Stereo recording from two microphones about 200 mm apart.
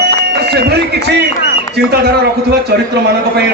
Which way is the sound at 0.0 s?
55° right (ahead or behind).